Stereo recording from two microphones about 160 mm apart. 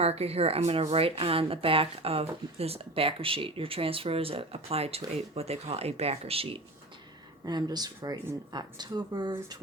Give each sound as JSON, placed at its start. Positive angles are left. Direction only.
{"t": 0.0, "sound": "a woman's voice", "side_deg": -40}
{"t": 7.4, "sound": "speech", "side_deg": -25}